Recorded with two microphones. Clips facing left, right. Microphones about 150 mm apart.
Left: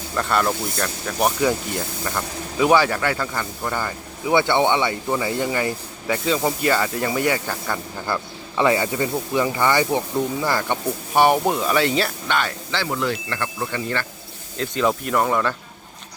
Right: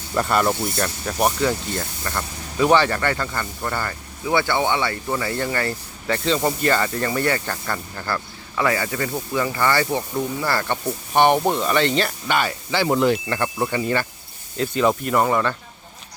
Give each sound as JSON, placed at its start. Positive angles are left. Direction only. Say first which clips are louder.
{"t": 0.2, "sound": "speech", "louder": "right 2 dB", "side_deg": -5}
{"t": 1.4, "sound": "speech", "louder": "left 1 dB", "side_deg": 10}
{"t": 10.7, "sound": "speech", "louder": "left 1 dB", "side_deg": 5}
{"t": 12.3, "sound": "speech", "louder": "right 2 dB", "side_deg": -5}
{"t": 12.9, "sound": "speech", "louder": "right 8 dB", "side_deg": -20}